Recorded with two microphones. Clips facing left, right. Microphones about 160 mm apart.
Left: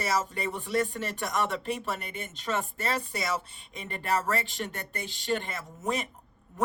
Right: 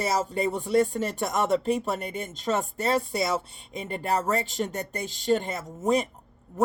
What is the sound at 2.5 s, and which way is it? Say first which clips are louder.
Speech: right 4 dB; 25° right (ahead or behind).